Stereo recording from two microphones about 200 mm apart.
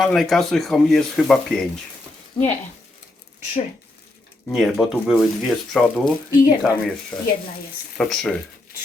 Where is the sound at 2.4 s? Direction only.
25° left (ahead or behind).